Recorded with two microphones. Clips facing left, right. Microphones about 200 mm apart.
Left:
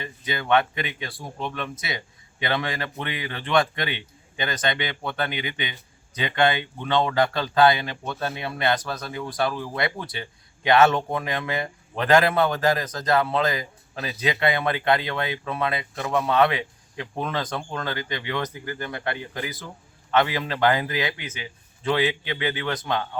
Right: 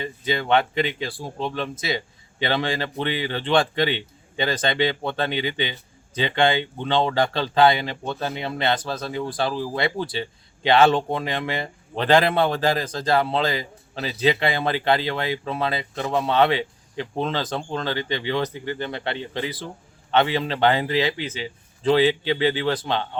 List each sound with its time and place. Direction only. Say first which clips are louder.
0.0 s speech: right 5 dB; 25° right (ahead or behind)